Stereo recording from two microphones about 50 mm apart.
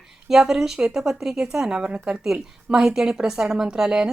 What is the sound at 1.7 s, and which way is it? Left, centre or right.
A woman's voice, right.